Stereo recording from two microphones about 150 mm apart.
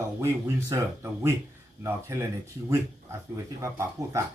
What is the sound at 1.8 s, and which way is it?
Speech, 20° right (ahead or behind).